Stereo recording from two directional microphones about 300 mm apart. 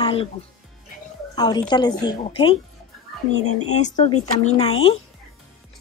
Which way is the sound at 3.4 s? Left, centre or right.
Left.